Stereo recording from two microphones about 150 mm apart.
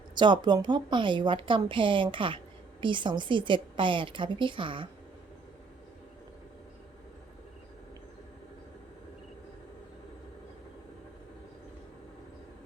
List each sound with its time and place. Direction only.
0.1 s a woman's voice: 30° right (ahead or behind)